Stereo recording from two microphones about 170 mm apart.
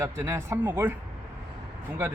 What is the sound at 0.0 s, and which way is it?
Speech, 15° right (ahead or behind).